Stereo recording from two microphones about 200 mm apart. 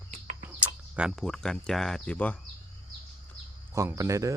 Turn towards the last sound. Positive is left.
turn(degrees=-15)  # may be behind; listen again after turning